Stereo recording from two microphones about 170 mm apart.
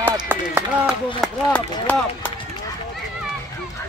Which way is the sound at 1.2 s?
Centre (ahead or behind).